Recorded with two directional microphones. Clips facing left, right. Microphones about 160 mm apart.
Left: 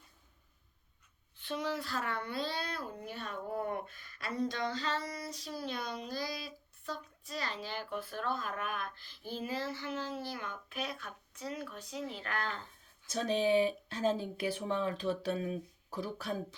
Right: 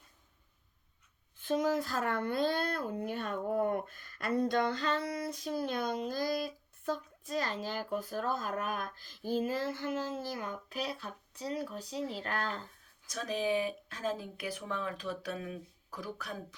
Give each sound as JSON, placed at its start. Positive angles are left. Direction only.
{"t": 1.4, "sound": "a child's voice", "side_deg": -45}
{"t": 13.1, "sound": "speech", "side_deg": 30}